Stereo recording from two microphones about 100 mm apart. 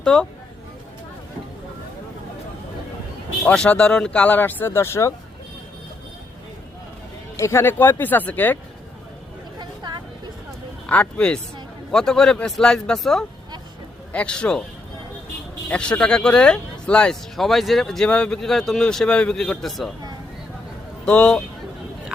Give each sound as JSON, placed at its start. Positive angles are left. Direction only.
{"t": 0.0, "sound": "speech", "side_deg": 5}
{"t": 3.4, "sound": "speech", "side_deg": 10}
{"t": 7.3, "sound": "speech", "side_deg": 30}
{"t": 10.8, "sound": "speech", "side_deg": 10}
{"t": 15.7, "sound": "speech", "side_deg": 10}
{"t": 21.0, "sound": "speech", "side_deg": 10}